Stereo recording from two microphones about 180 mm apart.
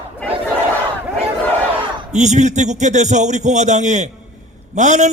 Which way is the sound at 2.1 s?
40° right (ahead or behind).